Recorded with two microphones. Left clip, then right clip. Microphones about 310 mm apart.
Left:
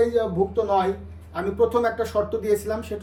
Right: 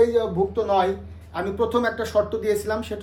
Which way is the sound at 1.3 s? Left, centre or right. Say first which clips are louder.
Left 1 dB; centre.